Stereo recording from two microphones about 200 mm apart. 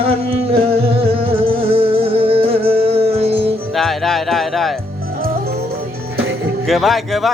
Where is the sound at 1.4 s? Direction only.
30° right (ahead or behind).